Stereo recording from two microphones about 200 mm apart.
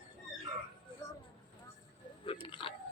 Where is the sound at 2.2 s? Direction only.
25° left (ahead or behind).